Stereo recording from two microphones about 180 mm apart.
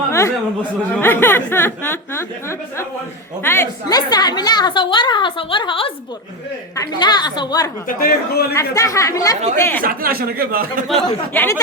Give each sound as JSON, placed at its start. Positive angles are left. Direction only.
{"t": 0.1, "sound": "a sound", "side_deg": 15}
{"t": 0.9, "sound": "a woman's voice", "side_deg": 10}
{"t": 7.9, "sound": "a man's voice", "side_deg": 55}
{"t": 8.5, "sound": "a woman's voice", "side_deg": 20}
{"t": 9.8, "sound": "speech", "side_deg": -55}
{"t": 10.8, "sound": "speech", "side_deg": 0}